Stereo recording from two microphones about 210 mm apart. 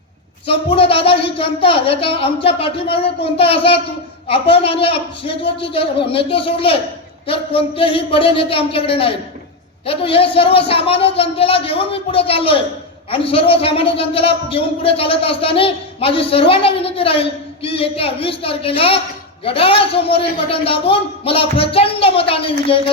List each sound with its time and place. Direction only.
0.7 s a man's voice: 25° left (ahead or behind)